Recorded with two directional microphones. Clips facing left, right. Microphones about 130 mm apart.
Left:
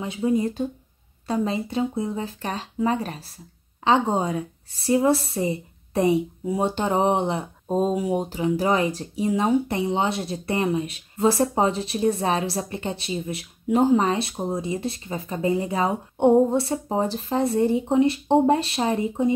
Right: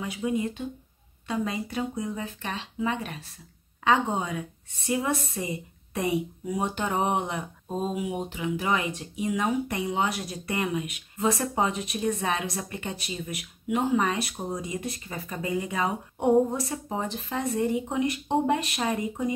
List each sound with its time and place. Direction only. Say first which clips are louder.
0.0 s a woman's voice: left 5 dB; 30° left (ahead or behind)